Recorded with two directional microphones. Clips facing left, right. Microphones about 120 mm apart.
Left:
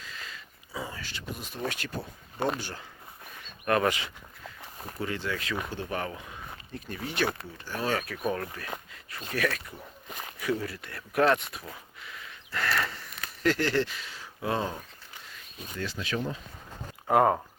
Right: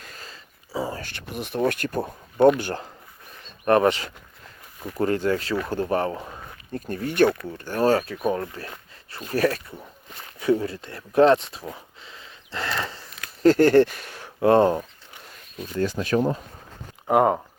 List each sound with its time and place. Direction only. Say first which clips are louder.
0.0 s whispering: right 1 dB; 45° right (ahead or behind)
1.0 s speech: right 6 dB; 65° right (ahead or behind)
3.7 s speech: right 7 dB; 30° right (ahead or behind)
4.9 s speech: right 11 dB; 45° right (ahead or behind)
7.9 s speech: right 8 dB; 30° right (ahead or behind)
11.7 s a sound: right 3 dB; 25° right (ahead or behind); by 14.8 s 60° right (ahead or behind)
15.5 s speech: right 10 dB; 45° right (ahead or behind)
17.1 s speech: right 3 dB; 15° right (ahead or behind)